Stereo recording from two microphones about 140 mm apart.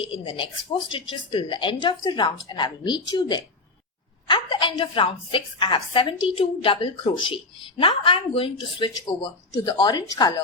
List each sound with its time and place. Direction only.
0.1 s speech: 35° left (ahead or behind)
9.5 s speech: 25° left (ahead or behind)